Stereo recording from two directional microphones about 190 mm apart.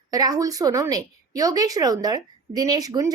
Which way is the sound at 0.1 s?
20° right (ahead or behind).